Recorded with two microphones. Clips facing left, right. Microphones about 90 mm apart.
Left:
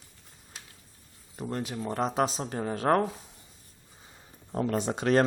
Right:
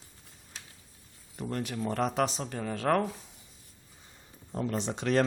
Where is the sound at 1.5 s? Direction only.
20° left (ahead or behind).